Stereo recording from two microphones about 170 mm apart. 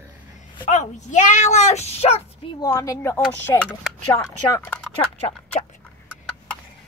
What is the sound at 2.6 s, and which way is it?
A woman's voice, 20° left (ahead or behind).